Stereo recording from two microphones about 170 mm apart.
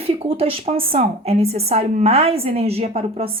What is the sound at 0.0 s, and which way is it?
A woman's voice, 35° right (ahead or behind).